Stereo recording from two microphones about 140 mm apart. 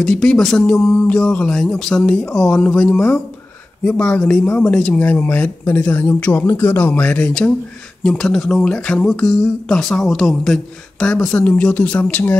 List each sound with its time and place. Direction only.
0.0 s speech: 5° left (ahead or behind)